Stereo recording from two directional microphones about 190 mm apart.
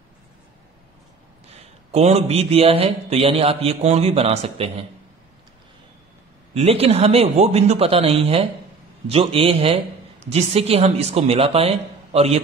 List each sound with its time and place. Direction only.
1.9 s a man's voice: 35° right (ahead or behind)
6.5 s a man's voice: 30° right (ahead or behind)